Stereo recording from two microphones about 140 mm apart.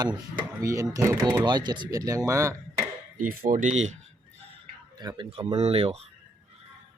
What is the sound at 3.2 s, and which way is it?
Speech, 85° right.